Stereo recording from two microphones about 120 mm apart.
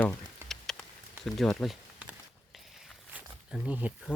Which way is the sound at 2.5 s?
Centre (ahead or behind).